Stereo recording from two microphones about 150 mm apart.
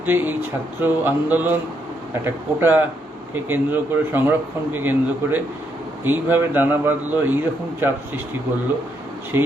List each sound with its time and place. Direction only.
0.0 s speech: 15° right (ahead or behind)
9.3 s speech: 15° right (ahead or behind)